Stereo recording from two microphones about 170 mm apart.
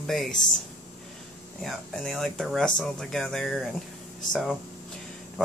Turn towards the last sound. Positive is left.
turn(degrees=0)  # may be behind; listen again after turning